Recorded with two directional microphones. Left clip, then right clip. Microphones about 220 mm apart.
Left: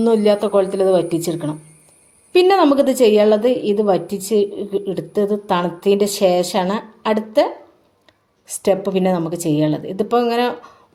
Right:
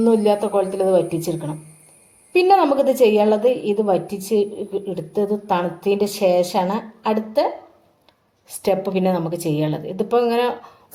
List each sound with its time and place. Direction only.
0.0 s a woman's voice: 30° left (ahead or behind)
8.6 s a woman's voice: 30° left (ahead or behind)